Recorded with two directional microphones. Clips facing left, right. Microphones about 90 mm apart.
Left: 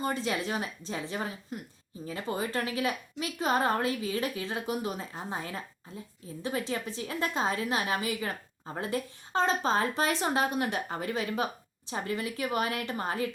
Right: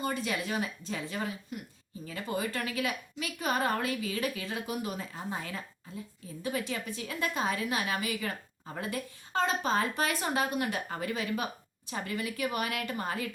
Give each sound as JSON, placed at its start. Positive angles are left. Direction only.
{"t": 0.0, "sound": "a woman's voice", "side_deg": 30}